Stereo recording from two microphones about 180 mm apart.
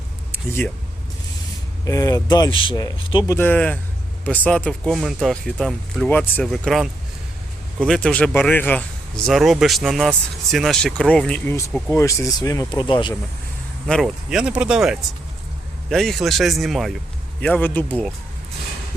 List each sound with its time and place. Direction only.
0.3 s a sound: 15° left (ahead or behind)
1.9 s speech: 20° left (ahead or behind)
3.3 s speech: 10° left (ahead or behind); by 13.1 s 25° left (ahead or behind)
13.8 s speech: centre (ahead or behind)
17.4 s speech: 10° left (ahead or behind)